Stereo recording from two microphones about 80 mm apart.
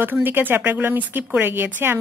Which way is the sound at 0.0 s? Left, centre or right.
Right.